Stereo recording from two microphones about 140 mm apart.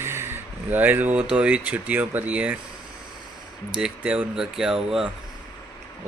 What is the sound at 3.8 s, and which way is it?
Speech, 5° right (ahead or behind).